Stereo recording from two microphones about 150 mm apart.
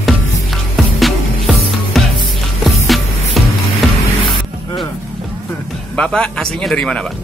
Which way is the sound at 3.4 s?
Centre (ahead or behind).